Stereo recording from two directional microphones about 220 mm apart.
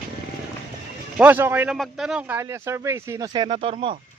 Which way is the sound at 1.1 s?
5° right (ahead or behind).